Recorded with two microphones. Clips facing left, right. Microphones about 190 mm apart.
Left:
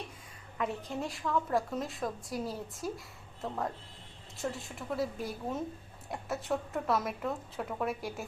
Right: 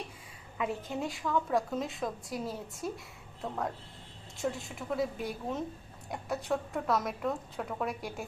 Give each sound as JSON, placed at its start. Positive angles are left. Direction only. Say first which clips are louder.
{"t": 0.6, "sound": "a woman's voice", "louder": "right 1 dB", "side_deg": 0}